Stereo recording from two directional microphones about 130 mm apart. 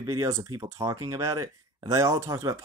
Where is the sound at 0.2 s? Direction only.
25° right (ahead or behind).